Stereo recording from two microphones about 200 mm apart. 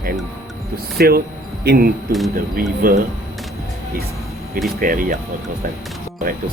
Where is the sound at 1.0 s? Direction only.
50° right (ahead or behind).